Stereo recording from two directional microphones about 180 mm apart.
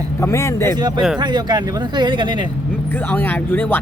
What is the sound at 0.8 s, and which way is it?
Speech, 25° right (ahead or behind).